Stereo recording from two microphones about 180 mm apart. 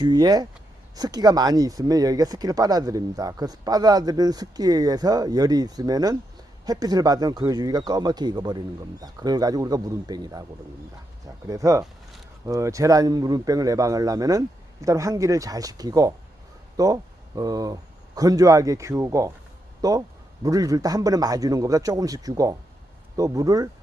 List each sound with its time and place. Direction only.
0.0 s speech: 20° right (ahead or behind)
11.4 s speech: 20° right (ahead or behind)